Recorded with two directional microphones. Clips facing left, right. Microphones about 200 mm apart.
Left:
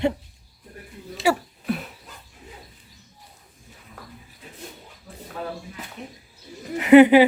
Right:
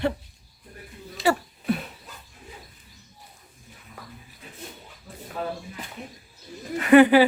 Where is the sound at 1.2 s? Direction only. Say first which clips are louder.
Left 1 dB; centre (ahead or behind).